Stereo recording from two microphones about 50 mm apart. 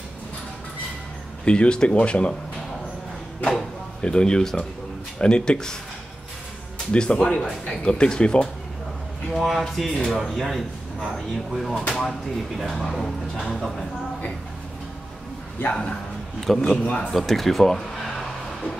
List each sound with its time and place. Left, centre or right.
1.4 s speech: left
4.0 s speech: centre
6.9 s speech: left
9.3 s speech: centre
16.3 s speech: centre
16.8 s speech: left
17.3 s speech: centre